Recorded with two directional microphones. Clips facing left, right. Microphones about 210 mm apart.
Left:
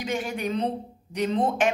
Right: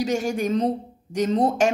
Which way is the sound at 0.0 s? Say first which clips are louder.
Right 5 dB; 45° right (ahead or behind).